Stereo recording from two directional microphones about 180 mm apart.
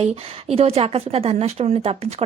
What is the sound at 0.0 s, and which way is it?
Speech, 35° right (ahead or behind).